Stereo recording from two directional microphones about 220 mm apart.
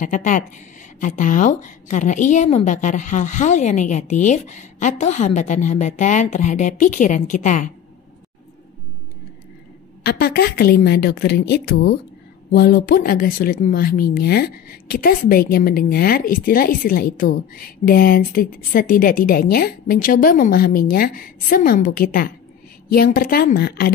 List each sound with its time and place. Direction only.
0.0 s speech: 35° left (ahead or behind)
10.0 s a woman's voice: 45° left (ahead or behind)